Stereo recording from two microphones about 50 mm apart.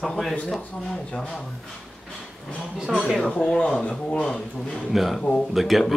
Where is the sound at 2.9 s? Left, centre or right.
Centre.